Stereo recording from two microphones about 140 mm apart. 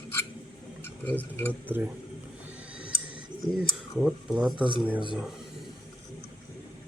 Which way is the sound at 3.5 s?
90° left.